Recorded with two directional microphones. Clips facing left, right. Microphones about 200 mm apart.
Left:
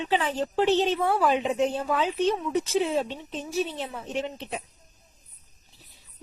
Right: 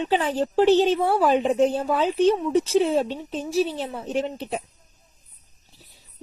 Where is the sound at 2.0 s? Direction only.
Centre (ahead or behind).